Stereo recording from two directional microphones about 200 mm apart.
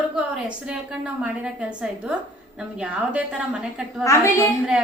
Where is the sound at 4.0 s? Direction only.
15° left (ahead or behind).